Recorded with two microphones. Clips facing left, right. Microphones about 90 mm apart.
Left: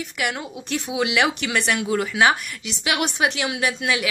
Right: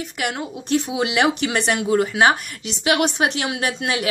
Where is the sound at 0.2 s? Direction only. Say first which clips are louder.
Right 1 dB; 30° right (ahead or behind).